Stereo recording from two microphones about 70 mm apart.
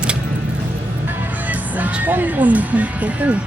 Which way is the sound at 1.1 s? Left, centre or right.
Right.